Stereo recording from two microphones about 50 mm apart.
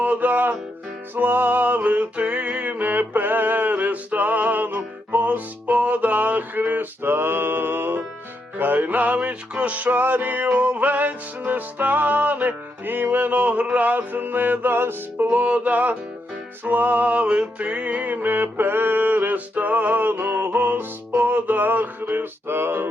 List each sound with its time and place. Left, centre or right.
0.0 s music: right
8.5 s music: right
15.3 s music: right